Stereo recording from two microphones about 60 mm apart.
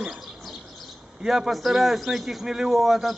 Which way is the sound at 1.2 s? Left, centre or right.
Centre.